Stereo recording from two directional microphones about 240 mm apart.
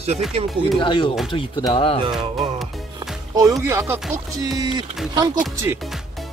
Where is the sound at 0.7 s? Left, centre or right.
Left.